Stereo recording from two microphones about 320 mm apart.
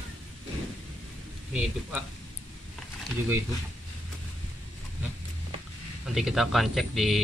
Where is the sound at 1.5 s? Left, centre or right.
Centre.